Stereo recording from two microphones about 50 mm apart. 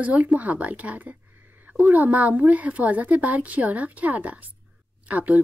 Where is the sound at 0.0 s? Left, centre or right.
Right.